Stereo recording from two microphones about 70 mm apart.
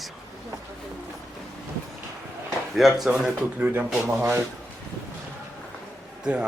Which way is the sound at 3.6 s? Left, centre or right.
Right.